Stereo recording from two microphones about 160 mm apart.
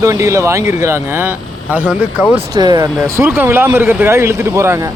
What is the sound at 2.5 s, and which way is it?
Speech, 25° right (ahead or behind).